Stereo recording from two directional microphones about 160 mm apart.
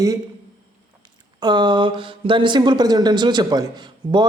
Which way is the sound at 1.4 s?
25° right (ahead or behind).